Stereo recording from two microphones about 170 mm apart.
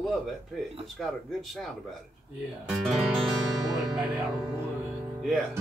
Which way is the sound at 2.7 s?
Centre (ahead or behind).